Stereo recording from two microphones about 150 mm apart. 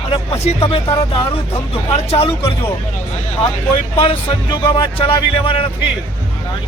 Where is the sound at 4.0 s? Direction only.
35° left (ahead or behind).